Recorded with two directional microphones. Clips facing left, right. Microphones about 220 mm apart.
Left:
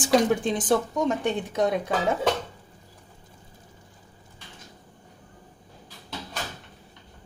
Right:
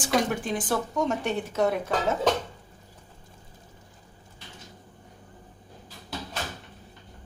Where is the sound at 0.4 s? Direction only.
20° left (ahead or behind).